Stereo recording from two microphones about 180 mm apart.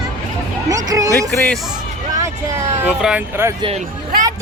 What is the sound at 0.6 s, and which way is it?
Speech, 20° right (ahead or behind).